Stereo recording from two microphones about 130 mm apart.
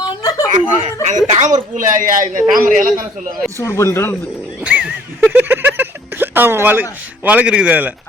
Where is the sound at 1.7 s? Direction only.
90° right.